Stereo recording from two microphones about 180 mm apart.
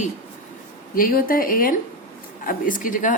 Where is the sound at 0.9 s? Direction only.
50° left (ahead or behind).